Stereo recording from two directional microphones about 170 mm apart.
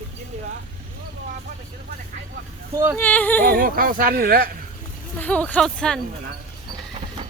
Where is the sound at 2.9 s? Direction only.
10° left (ahead or behind).